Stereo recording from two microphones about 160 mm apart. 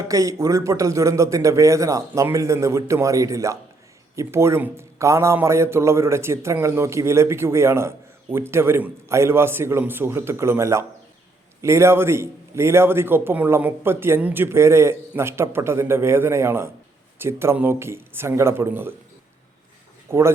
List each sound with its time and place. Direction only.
0.0 s a man's voice: 20° right (ahead or behind)
20.1 s speech: 15° right (ahead or behind)